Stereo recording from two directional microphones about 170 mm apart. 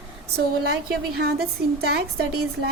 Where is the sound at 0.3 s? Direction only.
70° right (ahead or behind).